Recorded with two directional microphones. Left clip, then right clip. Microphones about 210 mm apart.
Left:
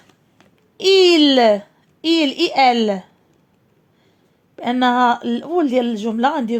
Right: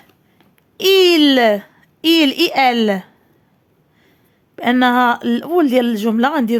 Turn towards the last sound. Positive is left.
turn(degrees=-20)  # may be behind; listen again after turning